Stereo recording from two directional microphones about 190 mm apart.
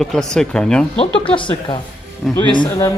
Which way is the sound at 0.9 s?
25° left (ahead or behind).